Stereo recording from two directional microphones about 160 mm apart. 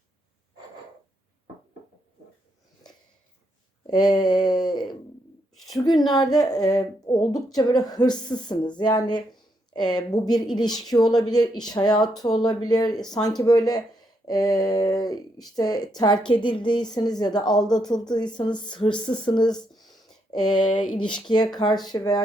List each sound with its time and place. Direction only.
3.8 s a woman's voice: 25° left (ahead or behind)
5.8 s a woman's voice: centre (ahead or behind)
6.1 s a woman's voice: 25° left (ahead or behind)
20.0 s a sound: centre (ahead or behind)
20.5 s a woman's voice: 30° left (ahead or behind)